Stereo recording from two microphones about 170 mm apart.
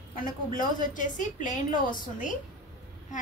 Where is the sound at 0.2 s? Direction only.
50° left (ahead or behind).